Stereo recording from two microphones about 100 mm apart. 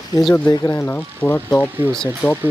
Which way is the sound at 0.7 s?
20° left (ahead or behind).